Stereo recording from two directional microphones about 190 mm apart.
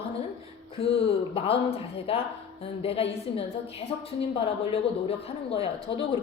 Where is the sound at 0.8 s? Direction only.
30° left (ahead or behind).